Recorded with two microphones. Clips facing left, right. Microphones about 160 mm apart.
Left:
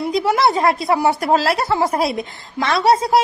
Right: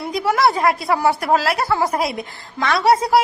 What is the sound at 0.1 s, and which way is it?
Speech, 20° left (ahead or behind).